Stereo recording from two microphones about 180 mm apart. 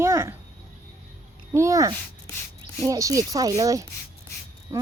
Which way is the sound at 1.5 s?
15° right (ahead or behind).